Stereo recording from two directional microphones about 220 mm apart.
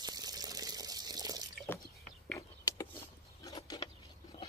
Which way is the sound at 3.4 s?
15° left (ahead or behind).